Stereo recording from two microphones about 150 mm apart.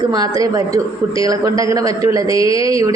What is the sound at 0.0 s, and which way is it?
Speech, 25° right (ahead or behind).